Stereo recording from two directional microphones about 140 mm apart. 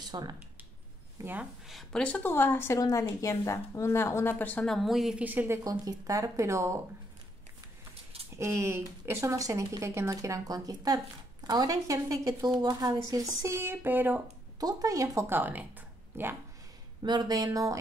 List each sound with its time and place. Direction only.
0.0 s speech: 30° right (ahead or behind)
1.1 s speech: 15° right (ahead or behind)
1.7 s a woman's voice: 5° left (ahead or behind)
5.6 s a woman's voice: 25° right (ahead or behind)
7.9 s a sound: 45° right (ahead or behind)
8.4 s a woman's voice: 20° right (ahead or behind)
14.6 s a woman's voice: 25° right (ahead or behind)
17.0 s a woman's voice: 30° right (ahead or behind)